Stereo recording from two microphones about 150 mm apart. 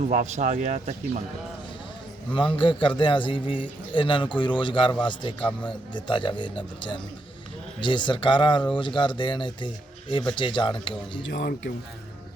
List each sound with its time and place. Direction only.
0.1 s speech: 50° right (ahead or behind)
2.3 s speech: 35° left (ahead or behind)
5.4 s speech: 10° left (ahead or behind)
5.9 s speech: 30° left (ahead or behind)